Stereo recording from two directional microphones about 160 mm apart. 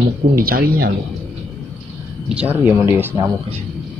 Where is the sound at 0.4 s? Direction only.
65° right (ahead or behind).